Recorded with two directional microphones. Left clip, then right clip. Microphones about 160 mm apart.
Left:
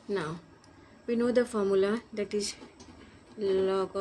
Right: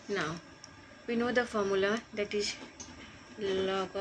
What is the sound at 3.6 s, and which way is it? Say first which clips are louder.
Speech: left 3 dB; 90° left.